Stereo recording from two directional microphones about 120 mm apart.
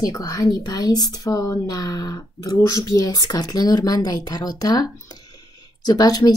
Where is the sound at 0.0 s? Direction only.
30° left (ahead or behind).